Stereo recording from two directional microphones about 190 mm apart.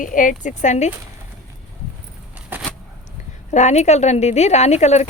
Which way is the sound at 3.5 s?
35° left (ahead or behind).